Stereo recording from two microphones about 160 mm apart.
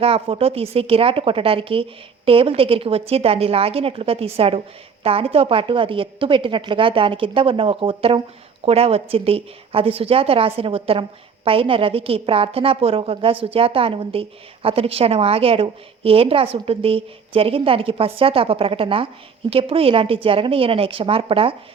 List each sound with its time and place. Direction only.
0.0 s a woman's voice: 35° right (ahead or behind)